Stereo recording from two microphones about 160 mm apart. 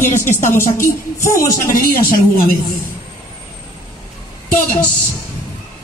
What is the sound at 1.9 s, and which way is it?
Speech, 65° left (ahead or behind).